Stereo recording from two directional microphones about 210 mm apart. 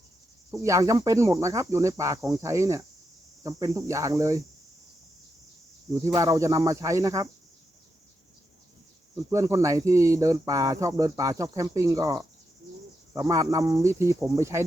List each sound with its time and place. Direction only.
0.5 s speech: 15° right (ahead or behind)
5.9 s speech: 15° right (ahead or behind)
9.3 s speech: 15° right (ahead or behind)